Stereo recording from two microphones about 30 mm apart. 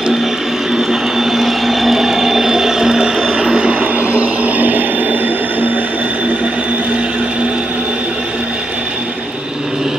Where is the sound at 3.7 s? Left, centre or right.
Right.